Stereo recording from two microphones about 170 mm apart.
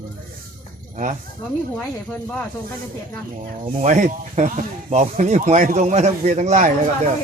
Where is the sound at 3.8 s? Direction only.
50° right (ahead or behind).